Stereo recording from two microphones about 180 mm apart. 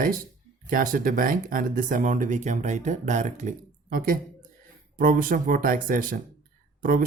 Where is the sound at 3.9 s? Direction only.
50° right (ahead or behind).